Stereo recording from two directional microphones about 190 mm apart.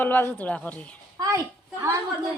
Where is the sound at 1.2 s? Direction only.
15° right (ahead or behind).